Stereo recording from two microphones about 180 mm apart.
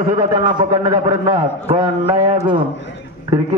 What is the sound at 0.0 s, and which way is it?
Speech, 40° right (ahead or behind).